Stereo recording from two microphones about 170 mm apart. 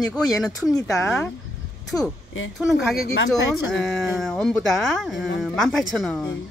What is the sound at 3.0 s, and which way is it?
Speech, 75° left (ahead or behind).